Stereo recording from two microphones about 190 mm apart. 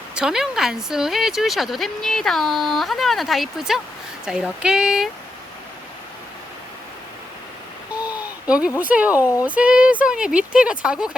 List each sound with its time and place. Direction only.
0.1 s speech: 5° right (ahead or behind)
7.9 s a sound: 5° right (ahead or behind)
8.8 s speech: 10° right (ahead or behind)
9.2 s speech: 15° left (ahead or behind)
9.6 s speech: 5° right (ahead or behind)